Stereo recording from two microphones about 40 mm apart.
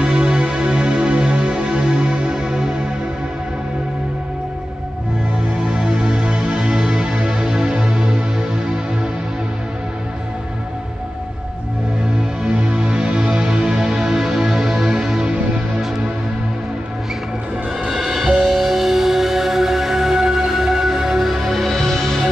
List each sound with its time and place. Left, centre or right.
0.0 s music: right
5.8 s music: centre
12.4 s music: right
17.8 s music: centre
21.6 s music: centre